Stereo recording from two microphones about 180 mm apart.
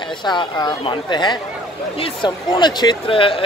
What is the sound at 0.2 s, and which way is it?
Speech, 25° left (ahead or behind).